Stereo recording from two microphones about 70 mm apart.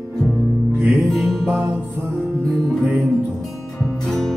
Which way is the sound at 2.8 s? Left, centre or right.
Right.